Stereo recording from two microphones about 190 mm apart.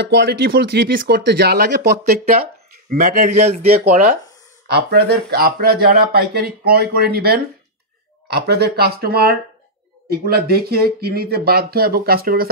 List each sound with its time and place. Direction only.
0.0 s speech: 65° right (ahead or behind)
2.9 s a man's voice: 45° right (ahead or behind)
3.6 s speech: 50° right (ahead or behind)